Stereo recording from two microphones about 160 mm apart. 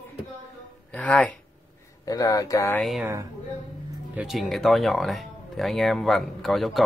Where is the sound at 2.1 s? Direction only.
20° left (ahead or behind).